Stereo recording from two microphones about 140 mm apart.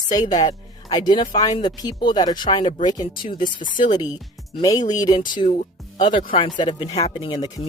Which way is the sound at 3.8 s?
30° left (ahead or behind).